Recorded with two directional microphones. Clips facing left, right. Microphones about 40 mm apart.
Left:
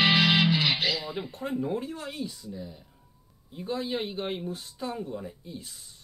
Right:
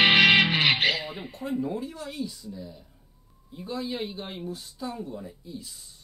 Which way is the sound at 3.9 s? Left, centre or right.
Left.